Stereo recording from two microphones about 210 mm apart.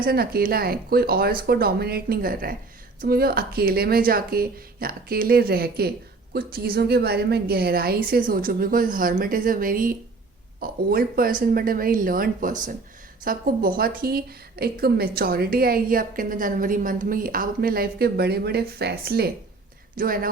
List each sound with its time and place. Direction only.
0.0 s a woman's voice: 45° right (ahead or behind)